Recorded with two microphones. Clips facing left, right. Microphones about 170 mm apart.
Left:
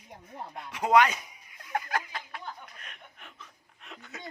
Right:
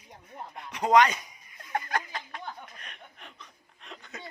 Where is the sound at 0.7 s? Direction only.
5° left (ahead or behind).